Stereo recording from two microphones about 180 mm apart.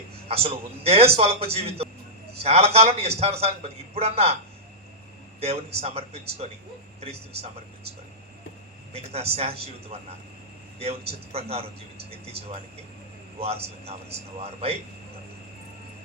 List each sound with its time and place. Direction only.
0.3 s a man's voice: 35° right (ahead or behind)
5.4 s a man's voice: 35° right (ahead or behind)
8.9 s a man's voice: 35° right (ahead or behind)